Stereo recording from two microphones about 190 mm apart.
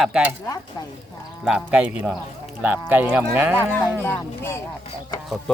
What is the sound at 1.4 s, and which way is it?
Speech, 5° right (ahead or behind).